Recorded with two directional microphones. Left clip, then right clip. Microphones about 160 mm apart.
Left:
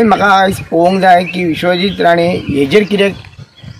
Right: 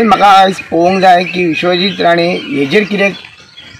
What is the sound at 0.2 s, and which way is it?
A man's voice, 30° left (ahead or behind).